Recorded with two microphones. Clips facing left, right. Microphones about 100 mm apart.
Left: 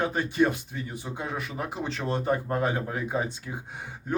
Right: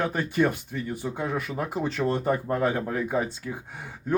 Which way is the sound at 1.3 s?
45° right (ahead or behind).